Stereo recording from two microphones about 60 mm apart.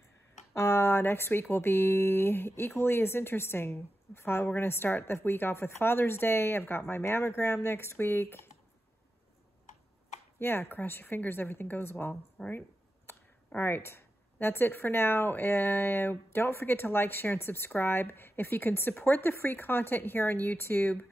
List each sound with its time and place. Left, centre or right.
0.6 s speech: left
10.4 s speech: left
12.4 s a sound: left
13.6 s speech: left